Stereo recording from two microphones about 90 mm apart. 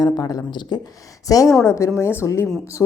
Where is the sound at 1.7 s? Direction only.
30° left (ahead or behind).